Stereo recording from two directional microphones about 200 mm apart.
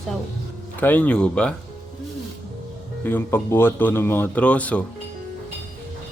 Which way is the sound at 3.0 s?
10° left (ahead or behind).